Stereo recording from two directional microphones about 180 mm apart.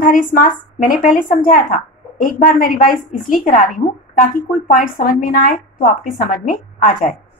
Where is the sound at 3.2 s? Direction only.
50° left (ahead or behind).